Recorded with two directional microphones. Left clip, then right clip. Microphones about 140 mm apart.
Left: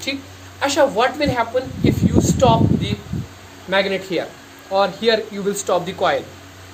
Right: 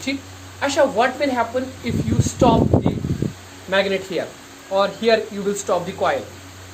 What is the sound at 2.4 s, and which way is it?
Speech, 65° left (ahead or behind).